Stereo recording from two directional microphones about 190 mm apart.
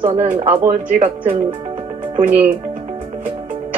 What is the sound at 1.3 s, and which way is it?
Music, 30° right (ahead or behind).